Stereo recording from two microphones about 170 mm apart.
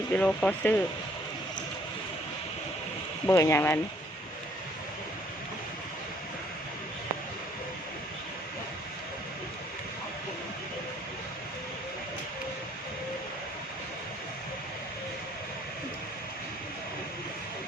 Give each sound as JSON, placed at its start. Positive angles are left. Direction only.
{"t": 0.2, "sound": "speech", "side_deg": 10}
{"t": 3.2, "sound": "speech", "side_deg": 15}